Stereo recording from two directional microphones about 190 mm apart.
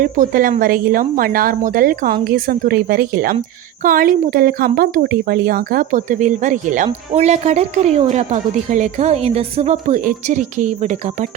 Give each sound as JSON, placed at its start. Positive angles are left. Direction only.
{"t": 0.0, "sound": "a woman's voice", "side_deg": -45}